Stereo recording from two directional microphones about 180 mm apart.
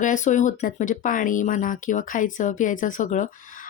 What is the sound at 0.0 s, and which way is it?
Speech, 45° left (ahead or behind).